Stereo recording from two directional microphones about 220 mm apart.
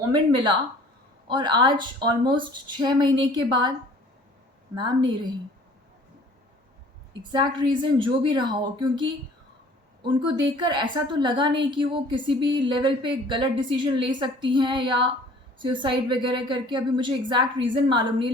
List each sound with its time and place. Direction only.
0.1 s a woman's voice: 20° right (ahead or behind)
4.7 s a woman's voice: 20° right (ahead or behind)
7.2 s a woman's voice: 20° right (ahead or behind)